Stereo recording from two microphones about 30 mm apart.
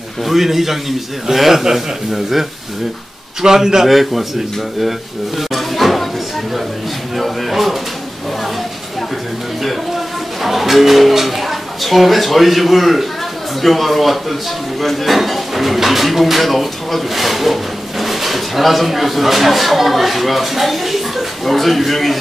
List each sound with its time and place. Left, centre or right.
0.2 s a man's voice: centre
3.4 s a man's voice: centre
3.8 s speech: centre
5.5 s a sound: centre
7.2 s speech: centre
9.6 s speech: centre